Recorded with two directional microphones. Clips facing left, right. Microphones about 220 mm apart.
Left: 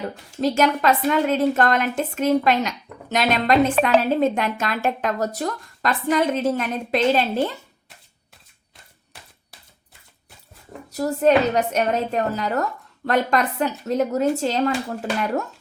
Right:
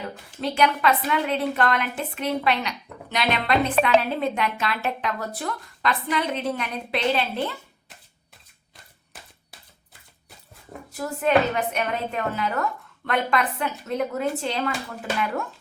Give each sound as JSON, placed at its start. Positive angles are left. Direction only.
{"t": 0.0, "sound": "a woman's voice", "side_deg": 40}
{"t": 10.8, "sound": "a woman's voice", "side_deg": 40}